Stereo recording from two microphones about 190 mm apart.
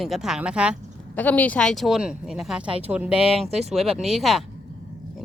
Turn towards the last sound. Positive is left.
turn(degrees=0)  # may be behind; listen again after turning